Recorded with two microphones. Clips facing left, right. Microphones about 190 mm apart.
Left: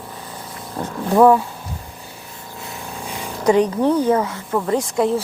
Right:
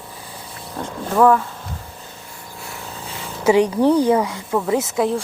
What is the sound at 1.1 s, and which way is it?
Speech, 15° left (ahead or behind).